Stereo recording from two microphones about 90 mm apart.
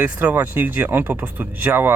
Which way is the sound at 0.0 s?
20° right (ahead or behind).